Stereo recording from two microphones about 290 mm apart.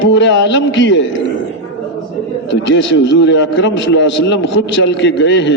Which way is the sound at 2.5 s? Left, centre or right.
Left.